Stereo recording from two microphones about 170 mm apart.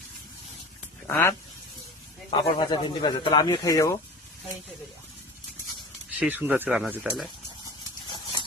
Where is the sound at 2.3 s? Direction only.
25° left (ahead or behind).